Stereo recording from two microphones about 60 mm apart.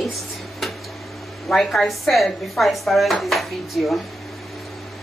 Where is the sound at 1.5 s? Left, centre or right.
Centre.